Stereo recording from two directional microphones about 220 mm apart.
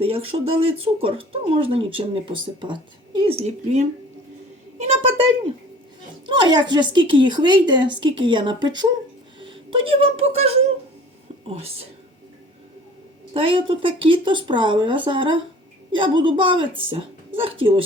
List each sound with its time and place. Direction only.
0.0 s speech: 25° right (ahead or behind)
4.8 s a sound: 30° right (ahead or behind)
6.2 s speech: 20° right (ahead or behind)
13.3 s speech: 25° right (ahead or behind)